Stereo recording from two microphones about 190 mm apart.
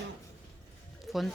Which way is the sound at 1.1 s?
Centre (ahead or behind).